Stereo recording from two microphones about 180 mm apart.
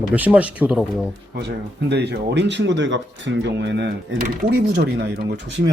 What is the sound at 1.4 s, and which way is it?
Speech, 70° right (ahead or behind).